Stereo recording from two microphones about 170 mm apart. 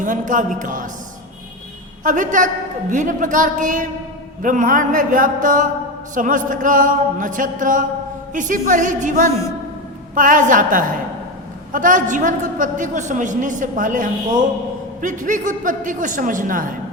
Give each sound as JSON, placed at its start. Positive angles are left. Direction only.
{"t": 0.0, "sound": "a woman's voice", "side_deg": -50}
{"t": 2.0, "sound": "a woman's voice", "side_deg": -50}